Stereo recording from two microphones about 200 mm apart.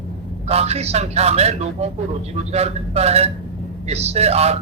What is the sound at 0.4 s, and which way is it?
A man's voice, 30° right (ahead or behind).